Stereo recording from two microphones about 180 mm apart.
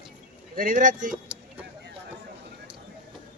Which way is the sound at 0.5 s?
50° right (ahead or behind).